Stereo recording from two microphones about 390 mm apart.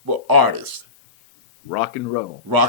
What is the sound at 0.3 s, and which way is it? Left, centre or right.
Speech, right.